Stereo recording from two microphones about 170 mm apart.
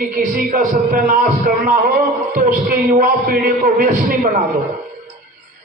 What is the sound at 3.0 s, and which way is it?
A man's voice, 55° right (ahead or behind).